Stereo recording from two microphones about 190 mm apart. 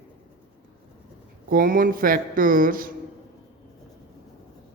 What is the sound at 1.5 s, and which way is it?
Speech, 50° right (ahead or behind).